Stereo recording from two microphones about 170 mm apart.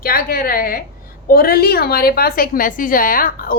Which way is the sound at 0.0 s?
60° left (ahead or behind).